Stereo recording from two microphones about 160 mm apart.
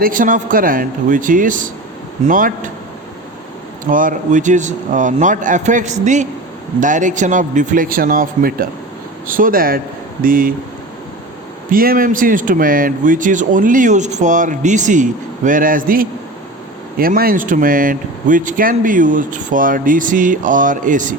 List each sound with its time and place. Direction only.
0.0 s speech: 55° right (ahead or behind)
3.8 s speech: 55° right (ahead or behind)
11.7 s speech: 65° right (ahead or behind)